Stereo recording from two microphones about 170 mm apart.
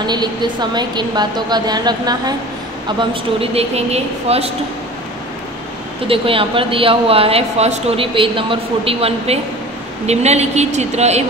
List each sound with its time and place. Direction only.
0.0 s a woman's voice: 25° right (ahead or behind)
6.0 s speech: 30° right (ahead or behind)